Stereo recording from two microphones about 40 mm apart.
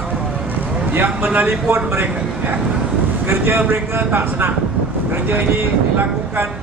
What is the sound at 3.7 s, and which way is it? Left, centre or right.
Speech, right.